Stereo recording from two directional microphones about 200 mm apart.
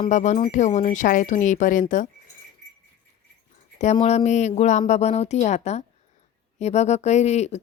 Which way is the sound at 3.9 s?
30° left (ahead or behind).